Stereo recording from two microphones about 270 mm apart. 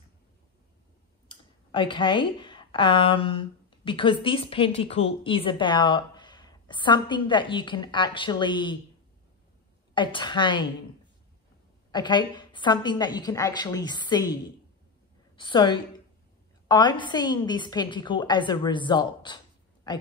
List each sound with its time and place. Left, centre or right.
1.3 s a woman's voice: centre
9.9 s a woman's voice: centre
11.9 s a woman's voice: centre
15.3 s a woman's voice: centre